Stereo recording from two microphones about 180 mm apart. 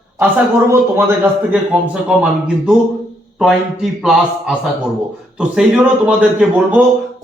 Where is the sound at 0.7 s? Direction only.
15° right (ahead or behind).